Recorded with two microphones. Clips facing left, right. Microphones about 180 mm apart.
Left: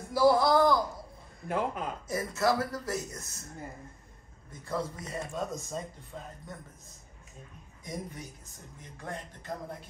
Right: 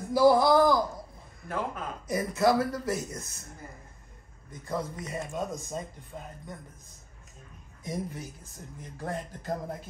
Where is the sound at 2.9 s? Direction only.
Centre (ahead or behind).